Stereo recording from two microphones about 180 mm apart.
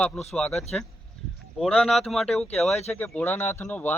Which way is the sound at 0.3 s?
5° left (ahead or behind).